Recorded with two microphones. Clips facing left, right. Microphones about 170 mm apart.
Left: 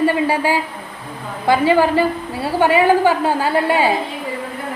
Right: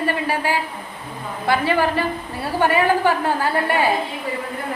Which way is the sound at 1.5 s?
20° left (ahead or behind).